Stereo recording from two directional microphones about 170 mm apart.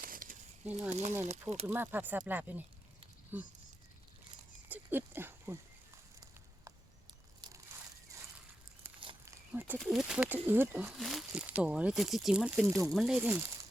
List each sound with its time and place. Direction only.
0.0 s a sound: 55° right (ahead or behind)
1.2 s speech: 40° right (ahead or behind)
1.6 s speech: 10° right (ahead or behind)
4.7 s speech: 10° right (ahead or behind)
7.4 s crushing: 25° right (ahead or behind)
9.2 s speech: 10° right (ahead or behind)
10.9 s speech: centre (ahead or behind)
12.6 s speech: 20° right (ahead or behind)
12.9 s speech: centre (ahead or behind)